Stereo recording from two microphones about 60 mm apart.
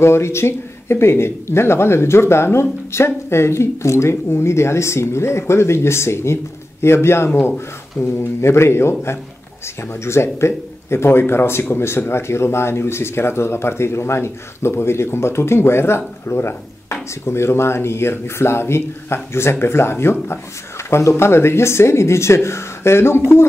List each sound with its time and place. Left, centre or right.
0.0 s speech: left